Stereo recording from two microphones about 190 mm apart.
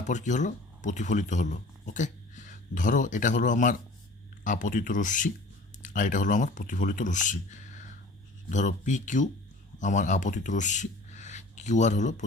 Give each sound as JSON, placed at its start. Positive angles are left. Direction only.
{"t": 0.0, "sound": "speech", "side_deg": 40}